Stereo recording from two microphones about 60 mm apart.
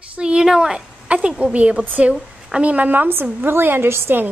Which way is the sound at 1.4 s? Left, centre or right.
Centre.